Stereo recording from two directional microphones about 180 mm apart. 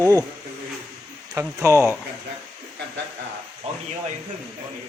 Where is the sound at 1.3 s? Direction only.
15° right (ahead or behind).